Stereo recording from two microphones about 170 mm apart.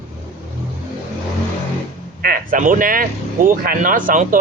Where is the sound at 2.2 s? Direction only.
55° right (ahead or behind).